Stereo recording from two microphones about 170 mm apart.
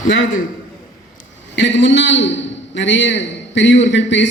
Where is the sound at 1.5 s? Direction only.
90° left.